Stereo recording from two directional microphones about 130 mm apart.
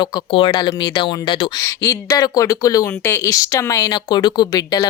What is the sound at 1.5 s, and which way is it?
Speech, 20° left (ahead or behind).